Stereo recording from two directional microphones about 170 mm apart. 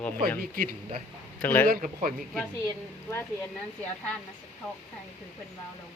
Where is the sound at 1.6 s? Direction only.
55° right (ahead or behind).